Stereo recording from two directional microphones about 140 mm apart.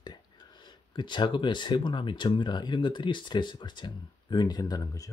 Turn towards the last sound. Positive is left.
turn(degrees=25)  # may be behind; listen again after turning